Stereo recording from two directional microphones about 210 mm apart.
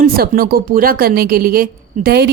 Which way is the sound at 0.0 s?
45° right (ahead or behind).